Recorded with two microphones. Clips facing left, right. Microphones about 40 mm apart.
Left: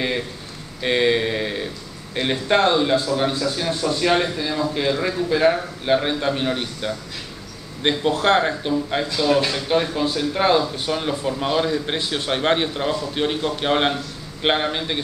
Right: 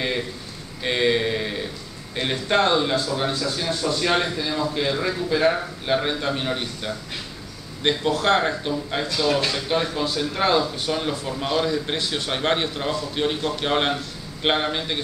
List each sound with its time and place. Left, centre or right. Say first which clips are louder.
0.8 s a man's voice: left 2 dB; centre
7.8 s speech: left 1 dB; left
8.4 s a man's voice: left 3 dB; centre